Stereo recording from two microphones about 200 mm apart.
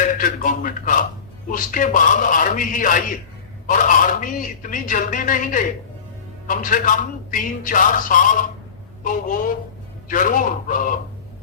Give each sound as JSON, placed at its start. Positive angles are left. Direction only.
{"t": 0.0, "sound": "a man's voice", "side_deg": 40}